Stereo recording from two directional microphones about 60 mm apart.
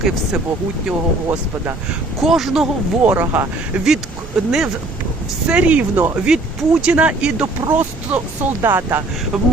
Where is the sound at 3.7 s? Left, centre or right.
Right.